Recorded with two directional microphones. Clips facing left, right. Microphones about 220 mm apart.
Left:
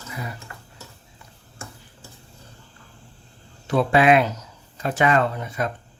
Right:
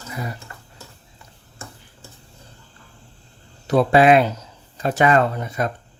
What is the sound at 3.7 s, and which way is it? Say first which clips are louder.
Speech: right 3 dB; 40° right (ahead or behind).